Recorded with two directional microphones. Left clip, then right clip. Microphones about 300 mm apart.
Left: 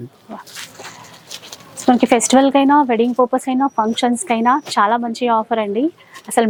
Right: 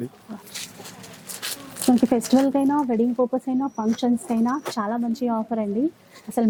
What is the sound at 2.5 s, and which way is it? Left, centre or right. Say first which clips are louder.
Speech: left 8 dB; centre.